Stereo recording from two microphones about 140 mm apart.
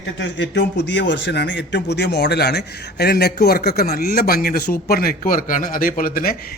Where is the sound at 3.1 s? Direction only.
90° left.